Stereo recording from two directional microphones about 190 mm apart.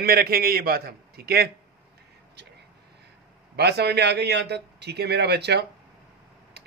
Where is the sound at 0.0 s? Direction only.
50° right (ahead or behind).